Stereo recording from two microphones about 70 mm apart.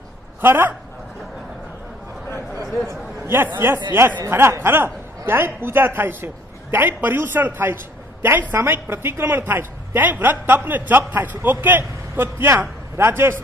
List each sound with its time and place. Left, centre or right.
0.4 s a woman's voice: right
3.3 s a woman's voice: right